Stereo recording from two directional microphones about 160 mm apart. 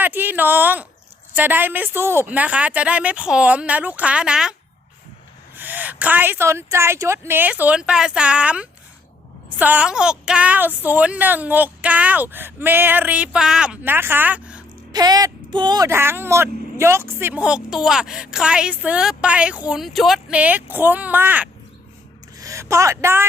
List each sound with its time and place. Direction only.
0.0 s speech: 10° right (ahead or behind)
5.5 s speech: 10° right (ahead or behind)
14.9 s speech: 25° right (ahead or behind)